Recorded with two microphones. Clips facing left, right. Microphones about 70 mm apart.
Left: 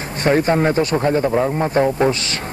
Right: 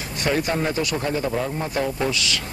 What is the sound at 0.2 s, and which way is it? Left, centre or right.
Speech, left.